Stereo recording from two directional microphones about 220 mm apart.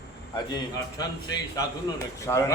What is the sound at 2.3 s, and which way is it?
Speech, 10° left (ahead or behind).